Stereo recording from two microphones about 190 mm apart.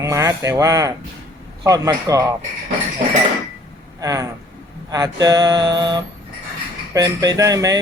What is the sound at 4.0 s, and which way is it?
Speech, 15° right (ahead or behind).